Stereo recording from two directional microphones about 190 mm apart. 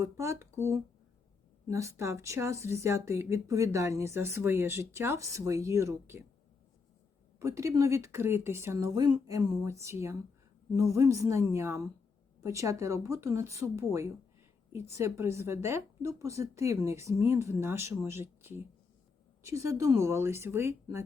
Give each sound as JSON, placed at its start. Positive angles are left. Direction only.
{"t": 0.0, "sound": "speech", "side_deg": -15}
{"t": 7.3, "sound": "speech", "side_deg": -15}